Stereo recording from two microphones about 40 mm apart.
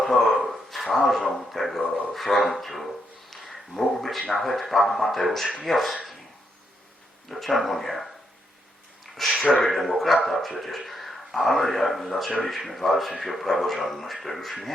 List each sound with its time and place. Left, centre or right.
0.0 s a sound: centre
0.3 s dog: centre
1.9 s speech: centre
3.2 s a sound: centre
4.3 s speech: centre
7.3 s speech: centre
9.2 s speech: centre